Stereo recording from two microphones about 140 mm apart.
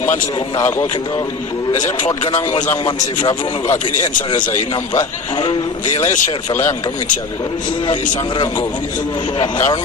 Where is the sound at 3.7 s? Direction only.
65° left (ahead or behind).